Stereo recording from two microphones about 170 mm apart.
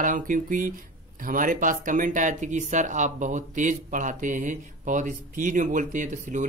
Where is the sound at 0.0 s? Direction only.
50° right (ahead or behind).